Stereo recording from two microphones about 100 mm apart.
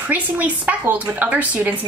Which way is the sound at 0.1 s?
15° right (ahead or behind).